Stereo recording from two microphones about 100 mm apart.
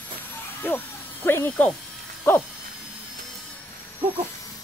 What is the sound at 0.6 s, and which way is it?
Speech, 20° left (ahead or behind).